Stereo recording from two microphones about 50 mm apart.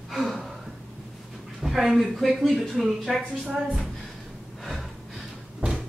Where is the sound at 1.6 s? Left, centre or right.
Centre.